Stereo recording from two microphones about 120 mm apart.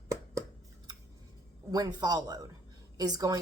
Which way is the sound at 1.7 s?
30° right (ahead or behind).